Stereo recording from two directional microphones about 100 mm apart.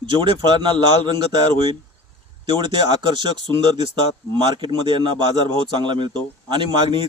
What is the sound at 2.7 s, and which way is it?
A man's voice, 50° right (ahead or behind).